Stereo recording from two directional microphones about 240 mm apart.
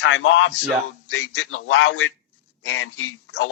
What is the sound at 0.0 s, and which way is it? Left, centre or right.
Speech, left.